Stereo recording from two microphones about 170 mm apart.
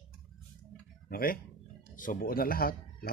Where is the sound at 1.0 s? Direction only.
60° left (ahead or behind).